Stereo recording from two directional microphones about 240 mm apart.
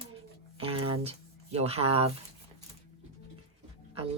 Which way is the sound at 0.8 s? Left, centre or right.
Right.